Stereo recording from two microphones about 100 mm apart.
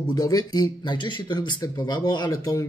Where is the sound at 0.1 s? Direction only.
35° left (ahead or behind).